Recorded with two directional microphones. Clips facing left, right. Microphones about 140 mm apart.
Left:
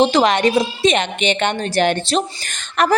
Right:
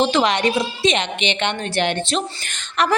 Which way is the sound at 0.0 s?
40° left (ahead or behind).